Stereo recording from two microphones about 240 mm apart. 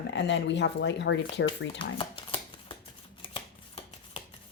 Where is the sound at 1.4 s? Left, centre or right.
Left.